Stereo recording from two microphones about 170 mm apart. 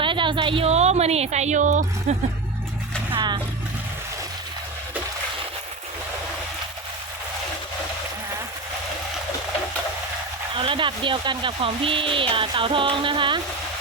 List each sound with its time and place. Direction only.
0.0 s a woman's voice: 30° right (ahead or behind); by 2.1 s 45° right (ahead or behind)
3.1 s vehicle: 30° right (ahead or behind)
10.6 s speech: 30° right (ahead or behind)